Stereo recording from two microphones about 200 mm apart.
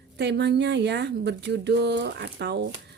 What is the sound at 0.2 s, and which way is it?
Speech, 60° right (ahead or behind).